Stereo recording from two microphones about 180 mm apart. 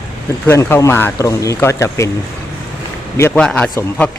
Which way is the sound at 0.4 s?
15° left (ahead or behind).